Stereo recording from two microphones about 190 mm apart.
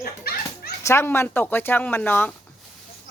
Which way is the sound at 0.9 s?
15° left (ahead or behind).